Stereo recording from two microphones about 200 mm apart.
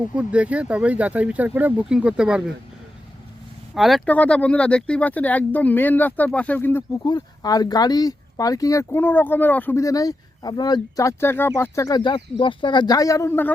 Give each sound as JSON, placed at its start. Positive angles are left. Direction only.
{"t": 0.1, "sound": "speech", "side_deg": -5}
{"t": 3.8, "sound": "speech", "side_deg": 0}
{"t": 7.0, "sound": "speech", "side_deg": 20}